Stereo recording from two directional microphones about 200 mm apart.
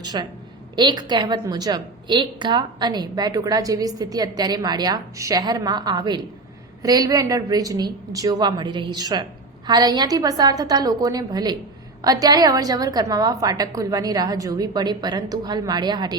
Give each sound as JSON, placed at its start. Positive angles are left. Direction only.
{"t": 0.0, "sound": "a woman's voice", "side_deg": -20}